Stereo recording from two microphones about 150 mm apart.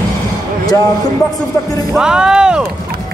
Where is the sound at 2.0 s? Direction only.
5° right (ahead or behind).